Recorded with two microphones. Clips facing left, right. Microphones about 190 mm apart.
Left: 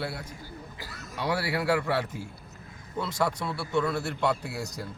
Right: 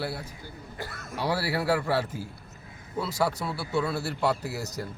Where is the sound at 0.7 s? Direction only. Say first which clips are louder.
Right 5 dB; 55° right (ahead or behind).